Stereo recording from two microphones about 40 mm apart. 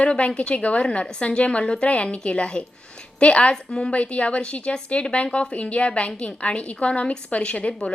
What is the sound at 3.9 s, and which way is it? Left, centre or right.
A woman's voice, left.